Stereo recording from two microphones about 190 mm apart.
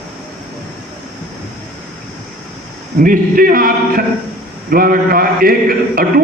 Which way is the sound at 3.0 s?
45° right (ahead or behind).